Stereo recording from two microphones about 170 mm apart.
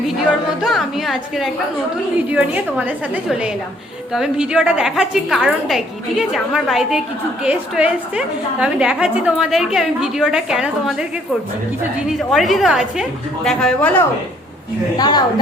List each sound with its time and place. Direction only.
0.6 s a woman's voice: centre (ahead or behind)
14.9 s a woman's voice: 25° left (ahead or behind)